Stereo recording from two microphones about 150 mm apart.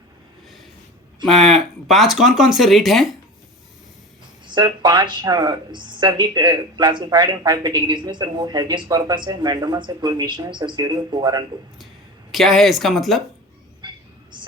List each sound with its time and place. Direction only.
1.5 s speech: centre (ahead or behind)
4.4 s speech: 30° right (ahead or behind)
12.3 s speech: centre (ahead or behind)
14.3 s whispering: 30° right (ahead or behind)